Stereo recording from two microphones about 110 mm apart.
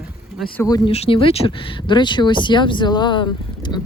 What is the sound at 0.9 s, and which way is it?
Speech, 60° left (ahead or behind).